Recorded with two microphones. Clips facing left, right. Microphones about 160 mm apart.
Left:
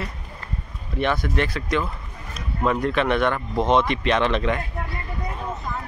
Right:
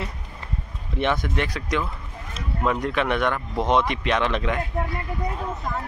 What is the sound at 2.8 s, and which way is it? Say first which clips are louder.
Speech: left 2 dB; 10° right (ahead or behind).